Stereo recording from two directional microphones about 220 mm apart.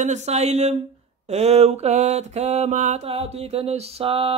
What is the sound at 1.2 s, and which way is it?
Mantra, 30° right (ahead or behind).